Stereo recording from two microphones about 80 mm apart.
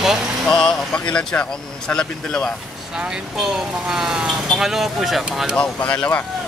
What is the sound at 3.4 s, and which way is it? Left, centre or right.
Speech, centre.